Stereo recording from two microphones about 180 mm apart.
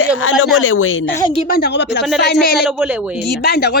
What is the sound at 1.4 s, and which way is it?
Speech, 60° left (ahead or behind).